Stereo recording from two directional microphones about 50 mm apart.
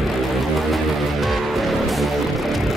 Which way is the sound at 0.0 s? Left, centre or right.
Centre.